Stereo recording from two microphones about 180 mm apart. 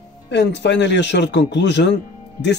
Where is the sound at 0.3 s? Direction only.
75° left (ahead or behind).